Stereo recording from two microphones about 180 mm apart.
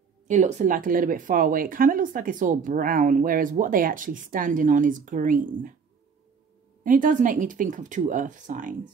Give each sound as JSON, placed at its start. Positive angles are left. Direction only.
{"t": 0.3, "sound": "speech", "side_deg": -40}
{"t": 6.8, "sound": "speech", "side_deg": -50}